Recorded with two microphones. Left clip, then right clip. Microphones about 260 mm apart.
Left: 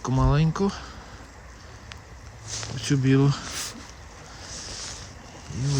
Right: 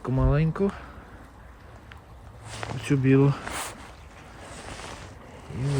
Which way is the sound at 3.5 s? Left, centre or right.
Right.